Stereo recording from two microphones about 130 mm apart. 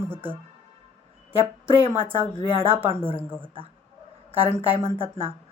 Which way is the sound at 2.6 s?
15° right (ahead or behind).